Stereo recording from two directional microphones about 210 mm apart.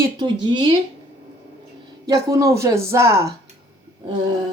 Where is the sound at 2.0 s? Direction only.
15° right (ahead or behind).